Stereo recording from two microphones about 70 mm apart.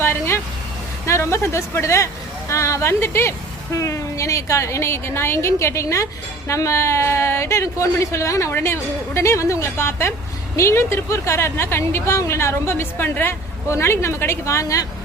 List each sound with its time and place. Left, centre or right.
0.0 s vehicle: left
1.0 s a woman's voice: left